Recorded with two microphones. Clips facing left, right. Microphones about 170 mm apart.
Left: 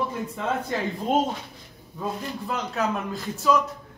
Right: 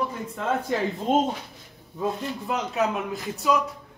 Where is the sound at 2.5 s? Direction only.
Centre (ahead or behind).